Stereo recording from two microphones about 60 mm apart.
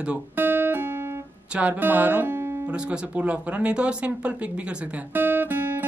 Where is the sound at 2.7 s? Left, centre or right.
Right.